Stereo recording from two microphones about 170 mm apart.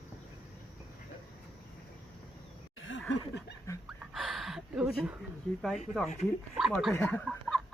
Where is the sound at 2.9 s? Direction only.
90° left.